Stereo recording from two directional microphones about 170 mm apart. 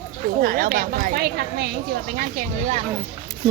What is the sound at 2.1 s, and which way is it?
Speech, 50° right (ahead or behind).